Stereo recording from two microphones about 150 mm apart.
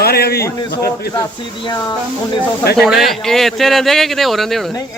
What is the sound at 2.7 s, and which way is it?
Speech, 5° right (ahead or behind).